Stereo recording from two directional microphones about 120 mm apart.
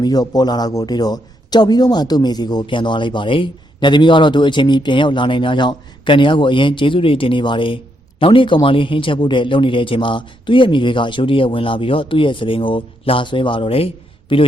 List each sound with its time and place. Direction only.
0.0 s a man's voice: 35° left (ahead or behind); by 14.4 s 50° left (ahead or behind)